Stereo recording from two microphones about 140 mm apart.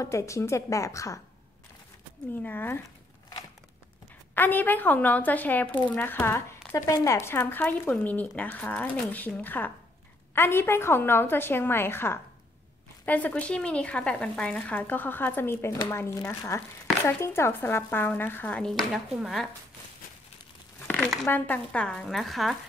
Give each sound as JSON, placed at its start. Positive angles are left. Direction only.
{"t": 0.0, "sound": "a woman's voice", "side_deg": 20}
{"t": 2.4, "sound": "speech", "side_deg": 15}
{"t": 4.4, "sound": "speech", "side_deg": 15}
{"t": 20.9, "sound": "speech", "side_deg": 0}